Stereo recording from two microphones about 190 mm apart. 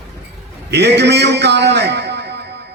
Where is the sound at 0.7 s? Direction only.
60° right (ahead or behind).